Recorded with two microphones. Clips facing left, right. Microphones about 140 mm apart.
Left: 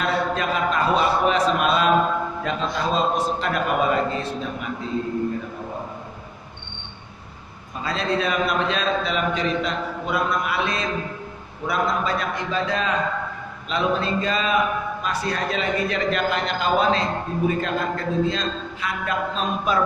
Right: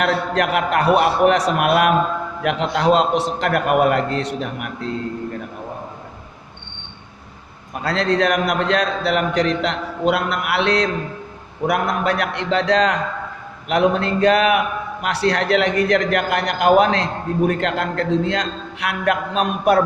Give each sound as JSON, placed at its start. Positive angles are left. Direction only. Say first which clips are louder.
{"t": 0.0, "sound": "a man's voice", "louder": "right 4 dB", "side_deg": -75}
{"t": 7.7, "sound": "a man's voice", "louder": "right 5 dB", "side_deg": -70}